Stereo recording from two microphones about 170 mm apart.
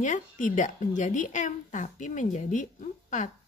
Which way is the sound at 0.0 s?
45° left (ahead or behind).